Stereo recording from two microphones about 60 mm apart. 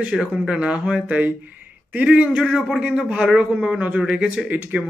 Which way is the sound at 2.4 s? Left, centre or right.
Centre.